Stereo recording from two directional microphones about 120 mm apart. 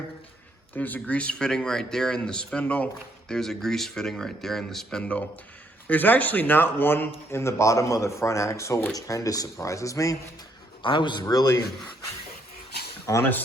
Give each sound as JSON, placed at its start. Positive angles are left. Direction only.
{"t": 0.8, "sound": "a man's voice", "side_deg": 15}
{"t": 10.8, "sound": "speech", "side_deg": 40}
{"t": 13.1, "sound": "a man's voice", "side_deg": 25}